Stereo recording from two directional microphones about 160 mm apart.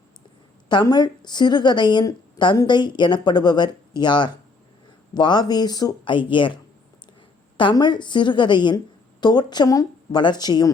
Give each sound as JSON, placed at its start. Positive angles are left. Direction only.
{"t": 0.7, "sound": "a woman's voice", "side_deg": 25}